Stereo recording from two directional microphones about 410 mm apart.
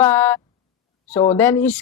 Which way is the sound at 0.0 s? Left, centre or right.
Centre.